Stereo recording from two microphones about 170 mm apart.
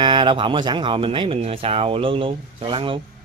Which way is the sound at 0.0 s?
25° right (ahead or behind).